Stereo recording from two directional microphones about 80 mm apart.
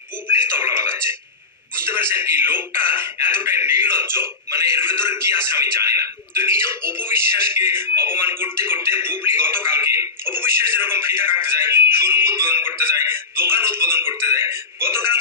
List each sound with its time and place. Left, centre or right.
0.3 s music: right
1.9 s speech: right